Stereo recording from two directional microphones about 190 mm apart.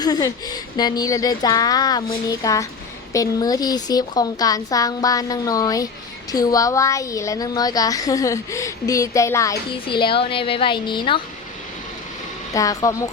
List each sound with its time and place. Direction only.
0.0 s a woman's voice: 20° left (ahead or behind)
9.8 s speech: 25° left (ahead or behind)
12.5 s a woman's voice: 15° left (ahead or behind)